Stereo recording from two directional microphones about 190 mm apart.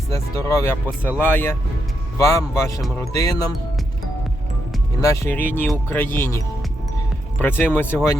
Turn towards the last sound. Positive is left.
turn(degrees=10)  # may be behind; listen again after turning